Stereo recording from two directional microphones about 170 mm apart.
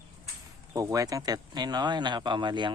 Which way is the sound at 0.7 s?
20° right (ahead or behind).